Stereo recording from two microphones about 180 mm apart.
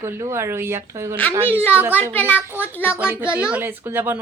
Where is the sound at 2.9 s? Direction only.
5° right (ahead or behind).